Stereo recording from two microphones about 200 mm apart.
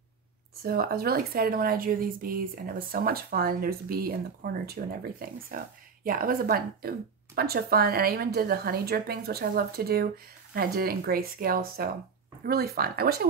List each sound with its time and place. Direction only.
0.7 s a woman's voice: 50° right (ahead or behind)